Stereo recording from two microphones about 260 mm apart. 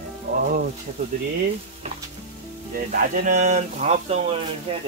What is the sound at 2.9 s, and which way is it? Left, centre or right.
Speech, right.